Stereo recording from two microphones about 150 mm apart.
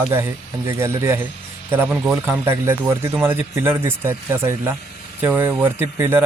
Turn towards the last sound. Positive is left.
turn(degrees=-15)  # may be behind; listen again after turning